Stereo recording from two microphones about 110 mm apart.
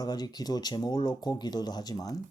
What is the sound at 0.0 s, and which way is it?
Speech, 35° left (ahead or behind).